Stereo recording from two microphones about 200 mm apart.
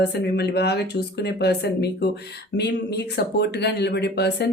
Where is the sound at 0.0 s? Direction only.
55° left (ahead or behind).